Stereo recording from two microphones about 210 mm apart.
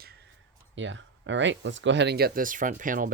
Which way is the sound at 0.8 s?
60° right (ahead or behind).